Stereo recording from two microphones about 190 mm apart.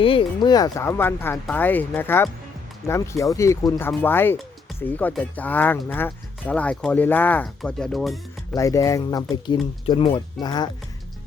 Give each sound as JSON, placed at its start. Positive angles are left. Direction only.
{"t": 0.0, "sound": "speech", "side_deg": 25}
{"t": 8.5, "sound": "speech", "side_deg": 15}